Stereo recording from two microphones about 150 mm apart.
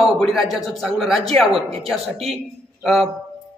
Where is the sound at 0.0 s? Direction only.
Centre (ahead or behind).